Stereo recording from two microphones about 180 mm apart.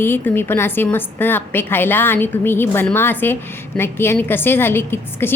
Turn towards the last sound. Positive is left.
turn(degrees=10)  # may be behind; listen again after turning